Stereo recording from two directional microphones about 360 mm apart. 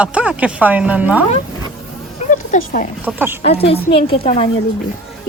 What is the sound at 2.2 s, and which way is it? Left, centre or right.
Speech, left.